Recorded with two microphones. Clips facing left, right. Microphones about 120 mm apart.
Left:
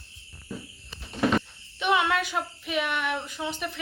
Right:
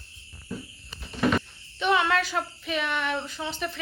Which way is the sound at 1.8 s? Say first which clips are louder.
Right 1 dB; 15° left (ahead or behind).